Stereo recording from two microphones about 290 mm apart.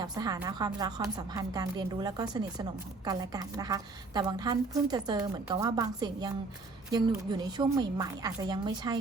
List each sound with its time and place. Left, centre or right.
0.0 s a woman's voice: centre